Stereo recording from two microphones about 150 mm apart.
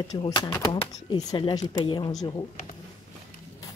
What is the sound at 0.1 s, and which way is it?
Speech, 30° left (ahead or behind).